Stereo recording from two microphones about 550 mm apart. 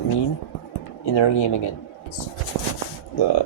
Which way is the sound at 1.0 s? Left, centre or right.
Left.